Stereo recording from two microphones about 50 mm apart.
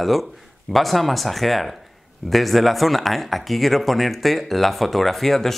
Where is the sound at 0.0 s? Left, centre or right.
Centre.